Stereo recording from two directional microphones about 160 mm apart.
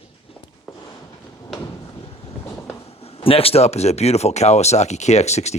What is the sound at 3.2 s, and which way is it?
Speech, 35° left (ahead or behind).